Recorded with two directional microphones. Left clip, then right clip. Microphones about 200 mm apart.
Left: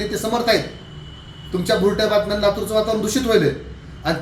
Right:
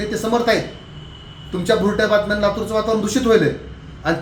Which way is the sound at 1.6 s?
Centre (ahead or behind).